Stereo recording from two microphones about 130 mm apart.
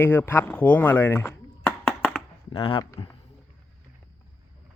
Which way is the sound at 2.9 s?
25° left (ahead or behind).